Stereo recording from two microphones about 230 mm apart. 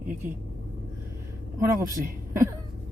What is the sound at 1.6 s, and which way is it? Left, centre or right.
Speech, centre.